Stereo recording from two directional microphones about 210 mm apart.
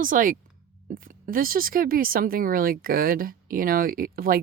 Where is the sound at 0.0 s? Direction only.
40° right (ahead or behind).